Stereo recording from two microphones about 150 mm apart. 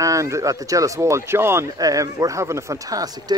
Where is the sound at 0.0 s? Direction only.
20° right (ahead or behind).